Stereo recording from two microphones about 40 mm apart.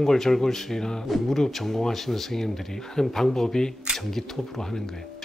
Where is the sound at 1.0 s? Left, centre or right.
Centre.